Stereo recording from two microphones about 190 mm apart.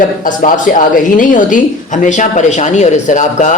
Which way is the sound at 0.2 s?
45° left (ahead or behind).